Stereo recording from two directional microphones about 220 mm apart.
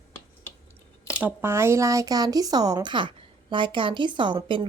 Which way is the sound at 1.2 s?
10° right (ahead or behind).